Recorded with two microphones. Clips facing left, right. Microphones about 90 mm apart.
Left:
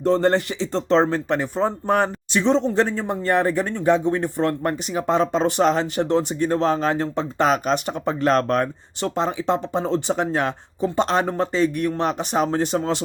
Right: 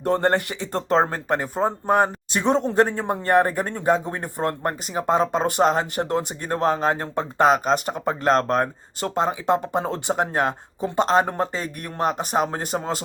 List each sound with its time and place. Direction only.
0.0 s speech: 55° right (ahead or behind)